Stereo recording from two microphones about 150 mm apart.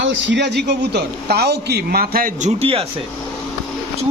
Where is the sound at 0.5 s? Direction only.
90° right; by 2.5 s 70° right (ahead or behind).